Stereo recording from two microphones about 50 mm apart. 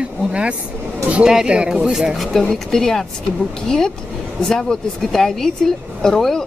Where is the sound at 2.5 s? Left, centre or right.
Centre.